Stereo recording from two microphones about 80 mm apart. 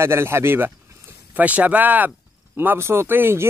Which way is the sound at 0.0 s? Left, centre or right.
Right.